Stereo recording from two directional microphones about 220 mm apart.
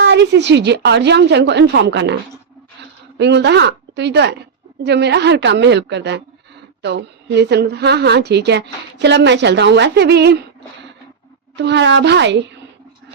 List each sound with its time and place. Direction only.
0.0 s a woman's voice: 50° right (ahead or behind)
3.2 s a woman's voice: 50° right (ahead or behind)
11.5 s a woman's voice: 50° right (ahead or behind)